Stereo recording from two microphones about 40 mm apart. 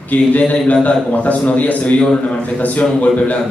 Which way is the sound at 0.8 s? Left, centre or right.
Left.